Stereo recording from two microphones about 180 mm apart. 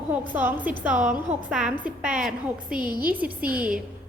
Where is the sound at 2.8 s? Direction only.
55° right (ahead or behind).